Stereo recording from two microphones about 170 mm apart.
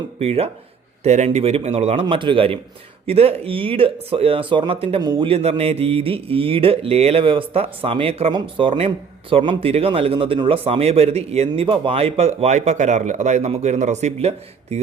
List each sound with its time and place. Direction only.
0.2 s speech: 35° right (ahead or behind)